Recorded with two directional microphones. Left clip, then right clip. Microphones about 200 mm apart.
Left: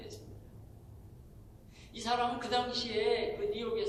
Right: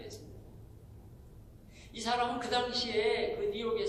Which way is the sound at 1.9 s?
15° right (ahead or behind).